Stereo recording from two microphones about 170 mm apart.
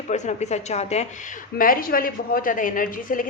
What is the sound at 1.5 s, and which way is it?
A woman's voice, 55° left (ahead or behind).